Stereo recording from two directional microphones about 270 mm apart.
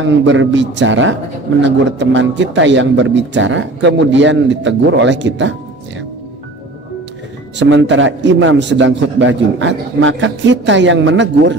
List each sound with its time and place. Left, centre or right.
0.0 s a man's voice: right
7.5 s a man's voice: right